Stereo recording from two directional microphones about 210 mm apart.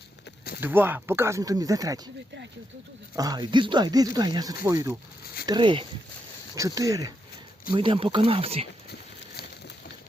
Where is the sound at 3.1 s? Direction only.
20° right (ahead or behind).